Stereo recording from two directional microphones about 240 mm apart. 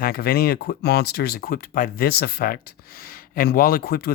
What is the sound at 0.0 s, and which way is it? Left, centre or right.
Speech, left.